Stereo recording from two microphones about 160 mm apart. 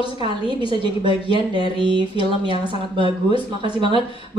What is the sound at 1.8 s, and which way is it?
Speech, 30° right (ahead or behind).